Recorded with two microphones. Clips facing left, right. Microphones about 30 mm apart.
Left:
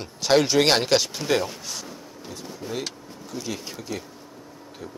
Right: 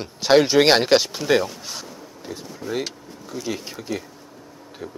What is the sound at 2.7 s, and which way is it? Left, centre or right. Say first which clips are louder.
Speech: right 5 dB; centre.